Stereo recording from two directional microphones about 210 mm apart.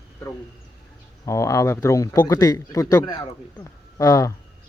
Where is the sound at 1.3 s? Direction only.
15° left (ahead or behind).